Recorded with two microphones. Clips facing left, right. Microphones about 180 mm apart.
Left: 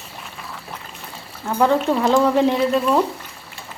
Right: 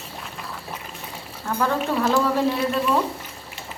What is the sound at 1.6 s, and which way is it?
Speech, 20° left (ahead or behind).